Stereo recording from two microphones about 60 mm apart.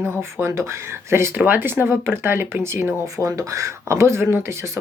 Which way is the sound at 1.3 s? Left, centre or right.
Right.